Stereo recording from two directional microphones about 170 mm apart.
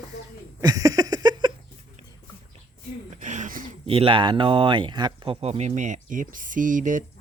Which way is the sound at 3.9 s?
30° right (ahead or behind).